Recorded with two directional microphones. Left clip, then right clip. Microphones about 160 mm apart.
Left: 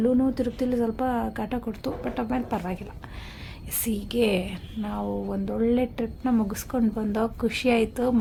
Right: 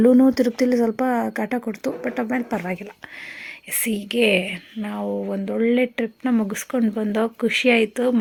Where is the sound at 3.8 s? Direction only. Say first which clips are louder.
Right 5 dB; 5° right (ahead or behind).